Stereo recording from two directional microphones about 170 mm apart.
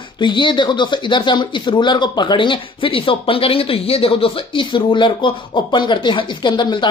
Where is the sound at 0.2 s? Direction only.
30° left (ahead or behind).